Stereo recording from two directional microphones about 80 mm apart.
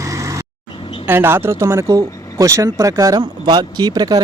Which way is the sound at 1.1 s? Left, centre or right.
Right.